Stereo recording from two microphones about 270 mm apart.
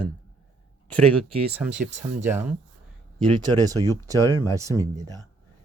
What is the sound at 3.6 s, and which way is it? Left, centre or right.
Speech, centre.